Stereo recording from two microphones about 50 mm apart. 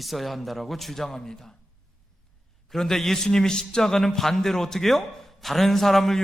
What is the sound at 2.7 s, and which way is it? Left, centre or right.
A man's voice, centre.